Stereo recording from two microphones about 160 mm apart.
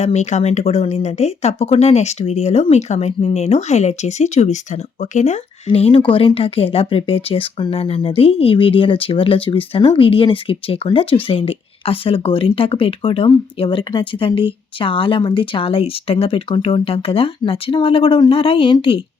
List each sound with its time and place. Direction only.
0.0 s speech: 45° left (ahead or behind)